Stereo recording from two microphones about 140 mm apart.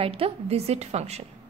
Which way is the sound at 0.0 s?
45° right (ahead or behind).